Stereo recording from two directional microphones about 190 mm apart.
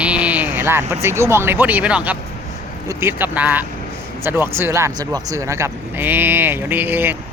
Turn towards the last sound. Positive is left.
turn(degrees=-10)  # may be behind; listen again after turning